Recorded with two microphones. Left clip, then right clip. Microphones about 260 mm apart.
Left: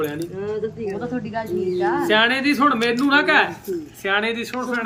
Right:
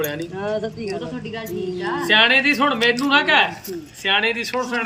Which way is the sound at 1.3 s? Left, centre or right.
Centre.